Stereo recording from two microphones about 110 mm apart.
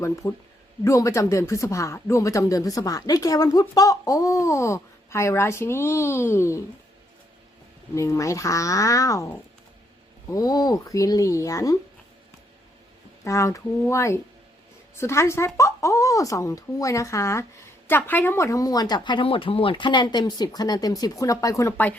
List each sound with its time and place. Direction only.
0.0 s speech: 25° left (ahead or behind)
7.9 s speech: 30° left (ahead or behind)
13.2 s speech: 30° left (ahead or behind)
17.8 s speech: 15° left (ahead or behind)